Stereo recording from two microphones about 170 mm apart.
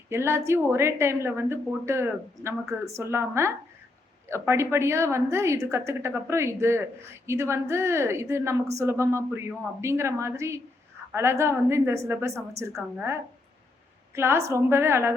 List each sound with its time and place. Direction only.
0.1 s a woman's voice: 15° right (ahead or behind)